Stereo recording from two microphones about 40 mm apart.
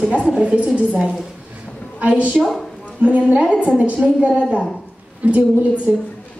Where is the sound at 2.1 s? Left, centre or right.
Right.